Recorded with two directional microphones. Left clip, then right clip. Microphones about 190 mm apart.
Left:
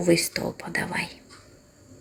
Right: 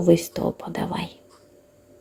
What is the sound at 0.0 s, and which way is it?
Speech, 25° right (ahead or behind).